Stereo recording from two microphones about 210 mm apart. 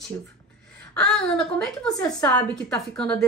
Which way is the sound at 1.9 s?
15° left (ahead or behind).